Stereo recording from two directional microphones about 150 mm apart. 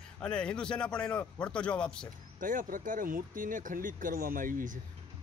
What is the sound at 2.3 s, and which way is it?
Speech, 60° right (ahead or behind).